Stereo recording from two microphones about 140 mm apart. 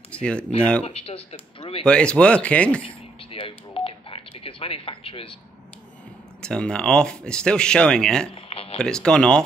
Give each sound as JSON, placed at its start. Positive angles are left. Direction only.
{"t": 0.1, "sound": "speech", "side_deg": 5}
{"t": 0.8, "sound": "speech", "side_deg": 45}
{"t": 1.9, "sound": "speech", "side_deg": 5}
{"t": 3.3, "sound": "a sound", "side_deg": 40}
{"t": 6.4, "sound": "speech", "side_deg": 5}
{"t": 8.4, "sound": "a sound", "side_deg": 45}
{"t": 8.7, "sound": "speech", "side_deg": 5}